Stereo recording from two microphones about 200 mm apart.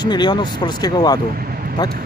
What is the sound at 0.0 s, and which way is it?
Speech, 20° left (ahead or behind).